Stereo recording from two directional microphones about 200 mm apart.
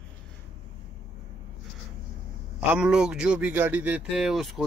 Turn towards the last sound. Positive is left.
turn(degrees=0)  # may be behind; listen again after turning